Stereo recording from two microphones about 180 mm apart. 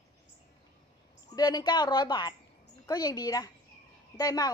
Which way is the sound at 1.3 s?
20° left (ahead or behind).